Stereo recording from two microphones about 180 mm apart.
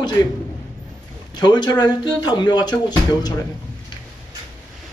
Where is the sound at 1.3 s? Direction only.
25° left (ahead or behind).